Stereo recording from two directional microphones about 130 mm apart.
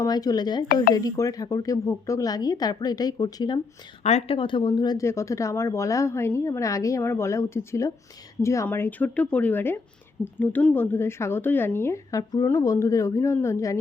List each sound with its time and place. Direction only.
0.0 s speech: 30° left (ahead or behind)
4.0 s a woman's voice: 60° left (ahead or behind)
4.4 s speech: 40° left (ahead or behind); by 13.7 s 20° left (ahead or behind)